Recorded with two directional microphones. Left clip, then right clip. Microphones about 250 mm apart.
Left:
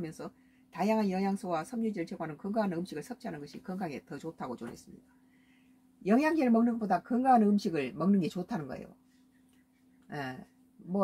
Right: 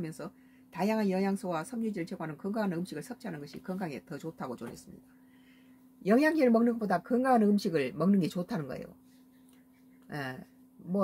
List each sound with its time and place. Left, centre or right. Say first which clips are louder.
0.0 s speech: even; centre
6.0 s speech: right 2 dB; centre
10.0 s speech: right 1 dB; centre